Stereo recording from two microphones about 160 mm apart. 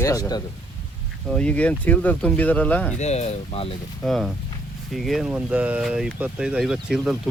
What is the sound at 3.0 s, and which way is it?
Speech, 45° left (ahead or behind).